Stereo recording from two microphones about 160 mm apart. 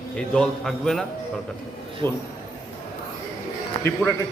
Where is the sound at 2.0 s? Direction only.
25° right (ahead or behind).